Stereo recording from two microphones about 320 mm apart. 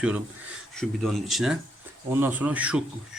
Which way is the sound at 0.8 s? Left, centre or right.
Centre.